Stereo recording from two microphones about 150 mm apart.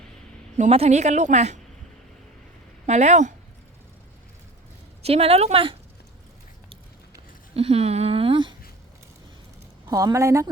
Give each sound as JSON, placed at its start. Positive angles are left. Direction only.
{"t": 0.5, "sound": "a woman's voice", "side_deg": -45}
{"t": 2.8, "sound": "a woman's voice", "side_deg": -50}
{"t": 5.0, "sound": "a woman's voice", "side_deg": -45}
{"t": 7.5, "sound": "speech", "side_deg": -45}
{"t": 9.9, "sound": "a woman's voice", "side_deg": -20}